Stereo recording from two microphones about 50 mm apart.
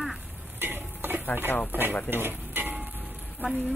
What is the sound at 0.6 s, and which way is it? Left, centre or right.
Stir, right.